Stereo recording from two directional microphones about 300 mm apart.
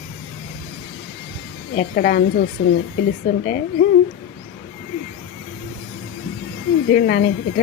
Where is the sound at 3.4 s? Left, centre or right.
Left.